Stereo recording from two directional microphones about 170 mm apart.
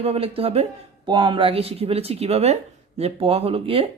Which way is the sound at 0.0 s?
35° right (ahead or behind).